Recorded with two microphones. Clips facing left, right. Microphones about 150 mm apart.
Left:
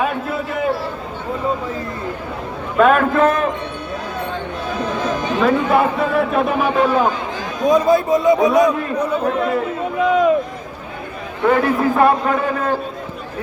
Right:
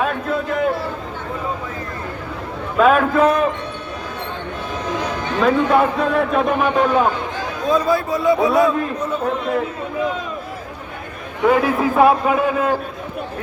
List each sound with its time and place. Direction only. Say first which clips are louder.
0.0 s a sound: even; 5° left (ahead or behind)
2.7 s a man's voice: left 1 dB; centre (ahead or behind)
5.4 s a man's voice: right 1 dB; 5° left (ahead or behind)
7.6 s a man's voice: left 4 dB; 20° left (ahead or behind)
10.0 s a sound: left 10 dB; 70° left (ahead or behind)
11.4 s a man's voice: even; 5° right (ahead or behind)